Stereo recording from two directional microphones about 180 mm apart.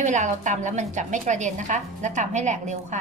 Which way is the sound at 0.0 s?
40° right (ahead or behind).